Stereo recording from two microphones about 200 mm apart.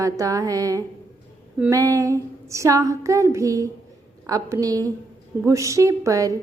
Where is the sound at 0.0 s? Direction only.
15° right (ahead or behind).